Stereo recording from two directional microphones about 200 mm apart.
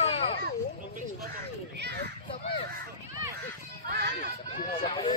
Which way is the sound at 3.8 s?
55° right (ahead or behind).